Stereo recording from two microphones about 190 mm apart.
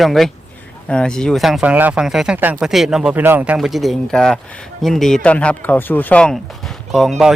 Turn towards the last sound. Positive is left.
turn(degrees=0)  # may be behind; listen again after turning